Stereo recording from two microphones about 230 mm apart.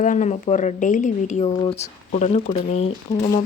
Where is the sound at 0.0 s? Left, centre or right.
Left.